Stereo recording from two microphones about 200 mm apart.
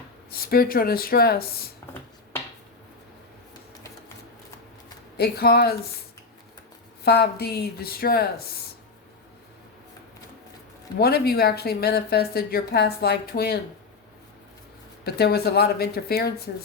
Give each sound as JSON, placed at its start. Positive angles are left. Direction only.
{"t": 0.3, "sound": "speech", "side_deg": 50}
{"t": 5.1, "sound": "speech", "side_deg": 55}
{"t": 7.0, "sound": "speech", "side_deg": 50}
{"t": 11.0, "sound": "speech", "side_deg": 50}
{"t": 15.0, "sound": "speech", "side_deg": 50}